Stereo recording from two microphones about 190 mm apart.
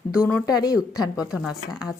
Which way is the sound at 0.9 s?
5° right (ahead or behind).